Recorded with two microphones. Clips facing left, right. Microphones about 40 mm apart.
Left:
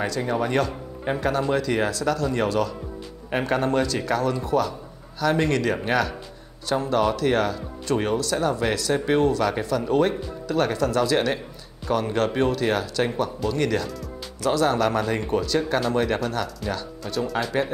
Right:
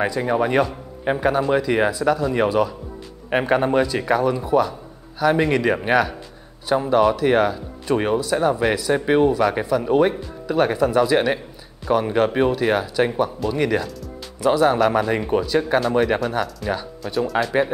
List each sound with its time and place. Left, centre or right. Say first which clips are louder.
0.0 s speech: right 4 dB; centre
16.4 s speech: right 4 dB; centre